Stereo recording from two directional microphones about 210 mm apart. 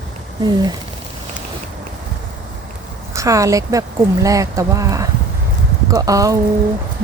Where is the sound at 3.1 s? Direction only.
15° right (ahead or behind).